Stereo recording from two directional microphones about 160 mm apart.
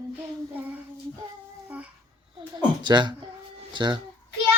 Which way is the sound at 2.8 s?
30° right (ahead or behind).